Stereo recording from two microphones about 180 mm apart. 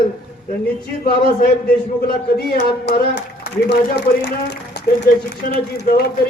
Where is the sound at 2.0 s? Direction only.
60° left (ahead or behind).